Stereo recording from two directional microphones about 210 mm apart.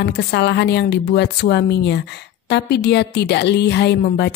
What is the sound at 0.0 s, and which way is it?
A woman's voice, 55° left (ahead or behind).